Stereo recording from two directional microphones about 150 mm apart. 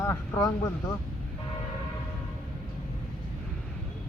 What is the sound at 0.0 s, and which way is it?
Speech, 25° left (ahead or behind).